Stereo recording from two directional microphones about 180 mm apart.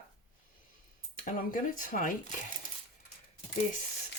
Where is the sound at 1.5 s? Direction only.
50° left (ahead or behind).